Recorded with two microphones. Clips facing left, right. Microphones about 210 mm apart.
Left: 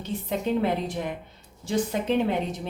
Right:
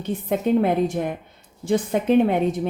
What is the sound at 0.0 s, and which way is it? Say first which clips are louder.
Speech: right 5 dB; 55° right (ahead or behind).